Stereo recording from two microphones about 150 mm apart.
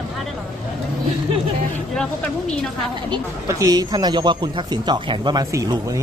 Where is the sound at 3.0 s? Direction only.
25° right (ahead or behind).